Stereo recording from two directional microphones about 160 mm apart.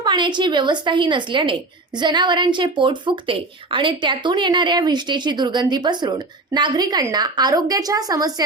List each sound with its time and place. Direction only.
0.0 s a woman's voice: 25° right (ahead or behind)